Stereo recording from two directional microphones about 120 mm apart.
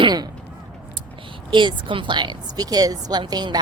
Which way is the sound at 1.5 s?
40° right (ahead or behind).